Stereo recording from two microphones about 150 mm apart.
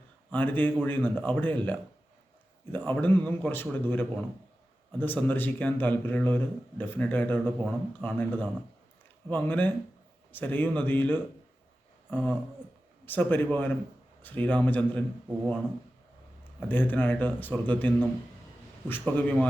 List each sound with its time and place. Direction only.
0.3 s speech: 10° left (ahead or behind)
16.6 s speech: 15° left (ahead or behind)